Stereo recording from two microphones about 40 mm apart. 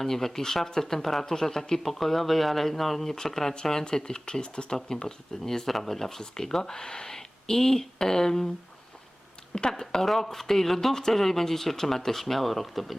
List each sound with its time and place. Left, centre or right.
0.0 s speech: centre
9.6 s speech: centre